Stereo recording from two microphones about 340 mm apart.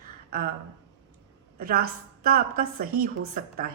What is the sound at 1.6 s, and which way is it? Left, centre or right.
A woman's voice, right.